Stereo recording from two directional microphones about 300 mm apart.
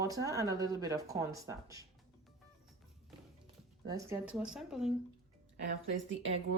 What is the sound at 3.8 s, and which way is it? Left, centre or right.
Speech, centre.